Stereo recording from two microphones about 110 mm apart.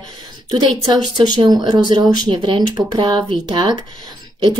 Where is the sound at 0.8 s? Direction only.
40° right (ahead or behind).